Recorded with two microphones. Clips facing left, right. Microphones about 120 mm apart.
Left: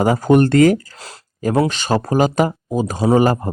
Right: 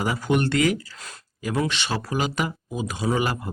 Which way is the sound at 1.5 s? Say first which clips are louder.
Left 9 dB; 40° left (ahead or behind).